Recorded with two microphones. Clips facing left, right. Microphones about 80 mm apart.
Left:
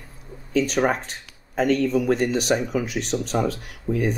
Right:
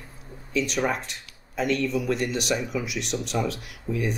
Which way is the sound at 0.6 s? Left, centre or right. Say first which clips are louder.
Left 5 dB; left.